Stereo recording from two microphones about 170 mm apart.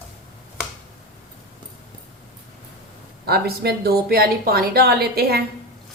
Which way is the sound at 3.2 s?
65° right (ahead or behind).